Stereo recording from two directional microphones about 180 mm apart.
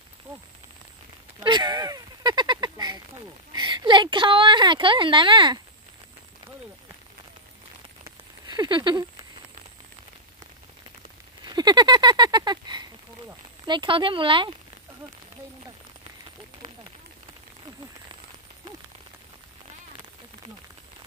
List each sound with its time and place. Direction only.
1.4 s speech: 25° right (ahead or behind)
8.0 s a sound: 25° right (ahead or behind)
11.4 s speech: 25° right (ahead or behind)